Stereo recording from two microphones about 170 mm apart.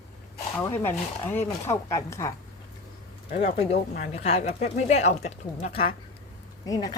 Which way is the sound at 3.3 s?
45° left (ahead or behind).